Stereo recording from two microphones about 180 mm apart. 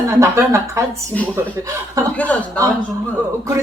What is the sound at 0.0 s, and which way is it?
Speech, 15° right (ahead or behind).